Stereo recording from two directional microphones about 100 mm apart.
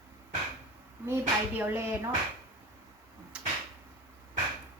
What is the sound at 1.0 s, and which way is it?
A child's voice, 25° right (ahead or behind).